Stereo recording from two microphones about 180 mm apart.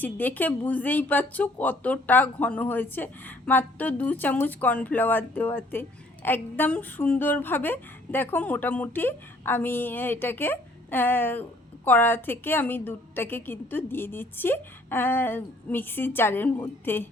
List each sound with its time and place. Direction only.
0.0 s speech: 10° left (ahead or behind)